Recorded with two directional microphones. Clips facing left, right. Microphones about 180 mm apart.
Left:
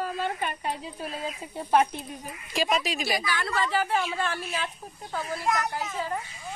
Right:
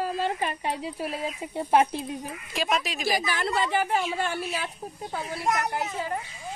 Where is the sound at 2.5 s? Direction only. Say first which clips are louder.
Left 1 dB; centre (ahead or behind).